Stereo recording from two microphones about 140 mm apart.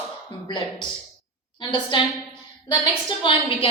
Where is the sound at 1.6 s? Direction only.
35° left (ahead or behind).